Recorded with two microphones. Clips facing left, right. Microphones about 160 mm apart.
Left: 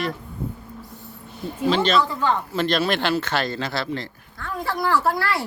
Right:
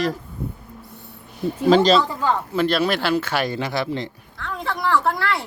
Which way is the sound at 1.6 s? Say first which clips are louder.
Right 6 dB; 45° right (ahead or behind).